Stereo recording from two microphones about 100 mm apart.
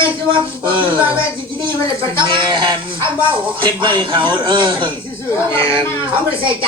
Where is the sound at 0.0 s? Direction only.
55° right (ahead or behind).